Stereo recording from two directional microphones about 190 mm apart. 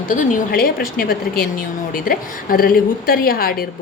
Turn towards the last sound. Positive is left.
turn(degrees=50)  # may be behind; listen again after turning